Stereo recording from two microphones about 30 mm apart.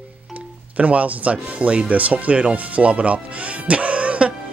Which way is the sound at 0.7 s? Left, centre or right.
Right.